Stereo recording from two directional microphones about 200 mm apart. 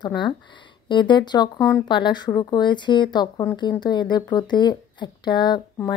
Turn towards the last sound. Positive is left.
turn(degrees=20)  # may be behind; listen again after turning